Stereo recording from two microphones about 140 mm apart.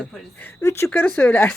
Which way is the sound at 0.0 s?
10° left (ahead or behind).